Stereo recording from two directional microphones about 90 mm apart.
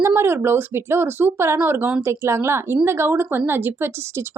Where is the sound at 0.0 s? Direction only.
25° right (ahead or behind).